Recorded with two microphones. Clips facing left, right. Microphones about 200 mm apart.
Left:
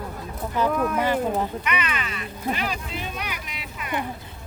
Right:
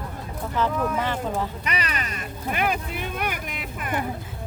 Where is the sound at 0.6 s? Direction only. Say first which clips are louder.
Left 2 dB; 15° left (ahead or behind).